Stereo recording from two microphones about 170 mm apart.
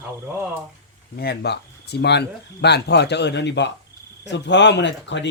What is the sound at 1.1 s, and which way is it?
Speech, 70° left (ahead or behind).